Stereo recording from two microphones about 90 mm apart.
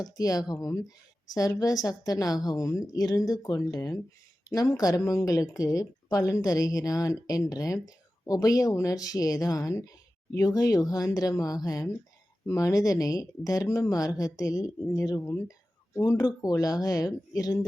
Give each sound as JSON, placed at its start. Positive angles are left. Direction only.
{"t": 0.0, "sound": "a woman's voice", "side_deg": 45}